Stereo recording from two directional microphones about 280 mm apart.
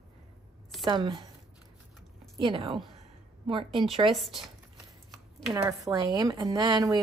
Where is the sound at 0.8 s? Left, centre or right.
Centre.